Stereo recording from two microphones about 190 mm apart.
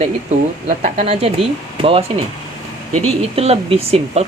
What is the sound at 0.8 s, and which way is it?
Speech, 40° right (ahead or behind).